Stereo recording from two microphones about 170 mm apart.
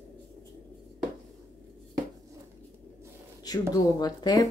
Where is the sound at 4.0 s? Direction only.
25° left (ahead or behind).